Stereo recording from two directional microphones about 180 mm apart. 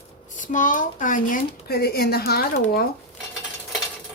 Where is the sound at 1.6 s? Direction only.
60° left (ahead or behind).